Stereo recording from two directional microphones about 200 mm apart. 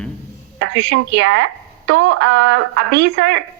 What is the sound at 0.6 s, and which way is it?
Speech, 65° right (ahead or behind).